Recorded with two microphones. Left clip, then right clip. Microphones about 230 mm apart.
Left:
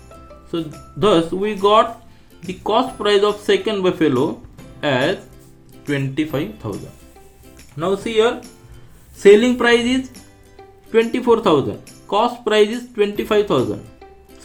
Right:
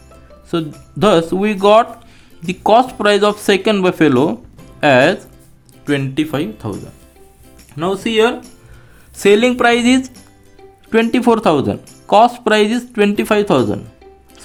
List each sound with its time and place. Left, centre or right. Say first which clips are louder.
0.9 s speech: right 3 dB; right
7.8 s speech: right 3 dB; right